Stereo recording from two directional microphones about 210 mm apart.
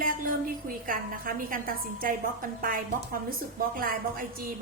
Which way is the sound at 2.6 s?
40° right (ahead or behind).